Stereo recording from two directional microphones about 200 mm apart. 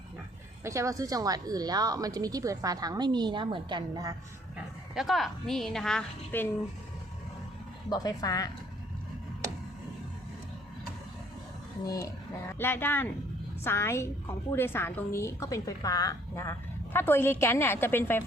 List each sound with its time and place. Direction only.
0.6 s speech: 15° right (ahead or behind)
4.5 s a woman's voice: centre (ahead or behind)
7.9 s a woman's voice: 20° left (ahead or behind)
11.9 s a woman's voice: 15° left (ahead or behind)